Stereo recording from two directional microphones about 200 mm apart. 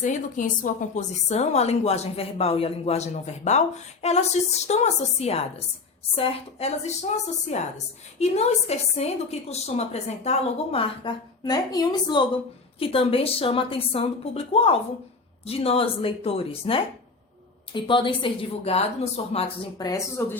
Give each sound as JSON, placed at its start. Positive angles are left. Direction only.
{"t": 0.0, "sound": "a woman's voice", "side_deg": 40}
{"t": 20.2, "sound": "speech", "side_deg": 10}